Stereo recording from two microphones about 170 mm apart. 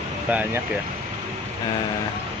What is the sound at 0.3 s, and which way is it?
Speech, 10° right (ahead or behind).